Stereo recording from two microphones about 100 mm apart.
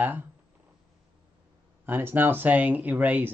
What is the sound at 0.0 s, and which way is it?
Speech, 20° right (ahead or behind).